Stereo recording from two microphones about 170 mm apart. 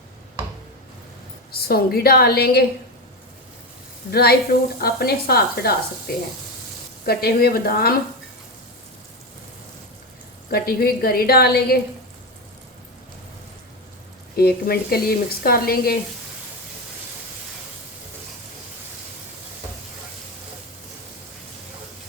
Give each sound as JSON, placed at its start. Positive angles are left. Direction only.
{"t": 1.6, "sound": "speech", "side_deg": 65}
{"t": 4.1, "sound": "speech", "side_deg": 65}
{"t": 10.5, "sound": "speech", "side_deg": 65}
{"t": 14.3, "sound": "speech", "side_deg": 65}